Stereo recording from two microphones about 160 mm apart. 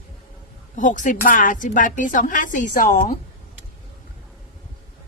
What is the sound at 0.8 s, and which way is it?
A woman's voice, 55° left (ahead or behind).